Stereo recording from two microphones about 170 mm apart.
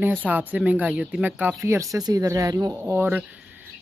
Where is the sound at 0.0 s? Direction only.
10° right (ahead or behind).